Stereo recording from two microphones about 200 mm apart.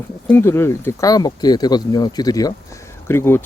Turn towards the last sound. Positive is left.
turn(degrees=10)  # may be behind; listen again after turning